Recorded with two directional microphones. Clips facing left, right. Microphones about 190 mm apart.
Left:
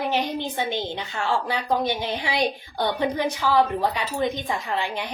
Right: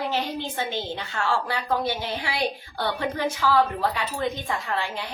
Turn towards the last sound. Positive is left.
turn(degrees=15)  # may be behind; listen again after turning